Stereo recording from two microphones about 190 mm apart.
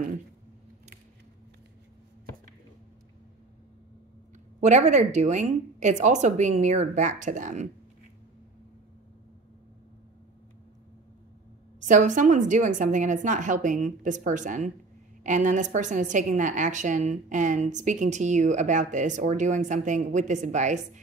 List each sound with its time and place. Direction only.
4.6 s a woman's voice: 40° right (ahead or behind)
11.8 s a woman's voice: 40° right (ahead or behind)